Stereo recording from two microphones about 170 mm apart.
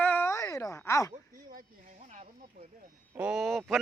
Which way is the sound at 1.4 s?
50° right (ahead or behind).